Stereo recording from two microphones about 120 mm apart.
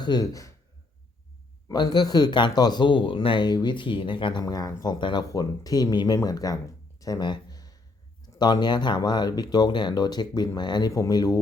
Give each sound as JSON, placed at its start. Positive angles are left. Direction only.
{"t": 0.0, "sound": "speech", "side_deg": 35}
{"t": 1.6, "sound": "speech", "side_deg": 35}
{"t": 4.4, "sound": "speech", "side_deg": 30}
{"t": 5.3, "sound": "speech", "side_deg": 30}
{"t": 7.0, "sound": "a sound", "side_deg": 35}
{"t": 8.3, "sound": "speech", "side_deg": 35}